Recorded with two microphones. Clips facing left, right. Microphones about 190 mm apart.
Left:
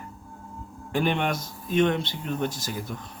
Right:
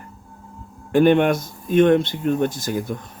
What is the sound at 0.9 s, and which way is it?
Speech, 55° right (ahead or behind).